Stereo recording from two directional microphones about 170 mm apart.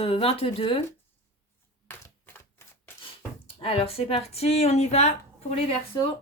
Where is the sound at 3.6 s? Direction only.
35° left (ahead or behind).